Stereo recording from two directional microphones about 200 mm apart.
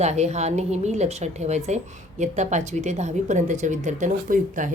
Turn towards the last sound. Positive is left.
turn(degrees=-40)  # may be behind; listen again after turning